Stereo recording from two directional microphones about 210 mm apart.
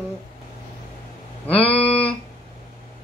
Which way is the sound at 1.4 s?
25° left (ahead or behind).